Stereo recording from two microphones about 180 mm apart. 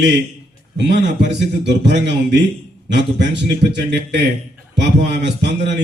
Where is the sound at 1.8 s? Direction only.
70° right (ahead or behind).